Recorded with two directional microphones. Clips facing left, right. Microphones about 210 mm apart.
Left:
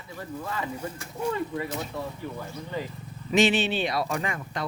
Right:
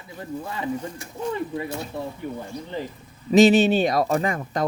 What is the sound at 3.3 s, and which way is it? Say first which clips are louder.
Speech: right 8 dB; 40° right (ahead or behind).